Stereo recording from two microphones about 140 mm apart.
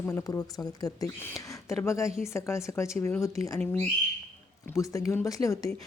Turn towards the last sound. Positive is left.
turn(degrees=25)  # may be behind; listen again after turning